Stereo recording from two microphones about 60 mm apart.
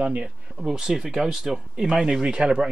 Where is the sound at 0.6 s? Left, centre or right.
Centre.